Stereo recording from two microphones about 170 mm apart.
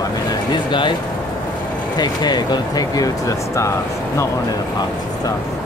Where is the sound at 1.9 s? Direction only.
25° left (ahead or behind).